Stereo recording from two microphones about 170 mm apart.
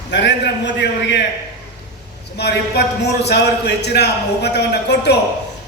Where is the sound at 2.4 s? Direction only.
75° left (ahead or behind).